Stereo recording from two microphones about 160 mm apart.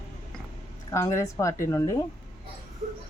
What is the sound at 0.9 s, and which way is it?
A woman's voice, 15° left (ahead or behind).